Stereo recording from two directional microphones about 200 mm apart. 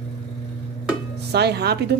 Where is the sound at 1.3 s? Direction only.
55° right (ahead or behind).